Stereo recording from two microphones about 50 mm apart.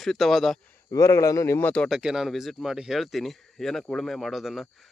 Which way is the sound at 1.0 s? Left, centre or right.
Left.